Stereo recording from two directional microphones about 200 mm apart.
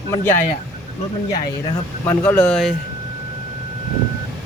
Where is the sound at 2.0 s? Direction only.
10° left (ahead or behind).